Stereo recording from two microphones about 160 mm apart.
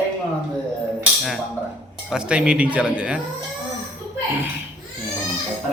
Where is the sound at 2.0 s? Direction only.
5° right (ahead or behind).